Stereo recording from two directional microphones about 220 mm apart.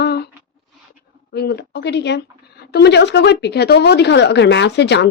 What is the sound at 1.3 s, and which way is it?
A woman's voice, 50° left (ahead or behind).